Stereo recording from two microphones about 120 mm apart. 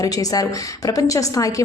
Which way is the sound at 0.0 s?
30° left (ahead or behind).